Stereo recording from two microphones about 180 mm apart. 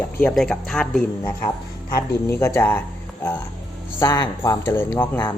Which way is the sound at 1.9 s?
15° left (ahead or behind).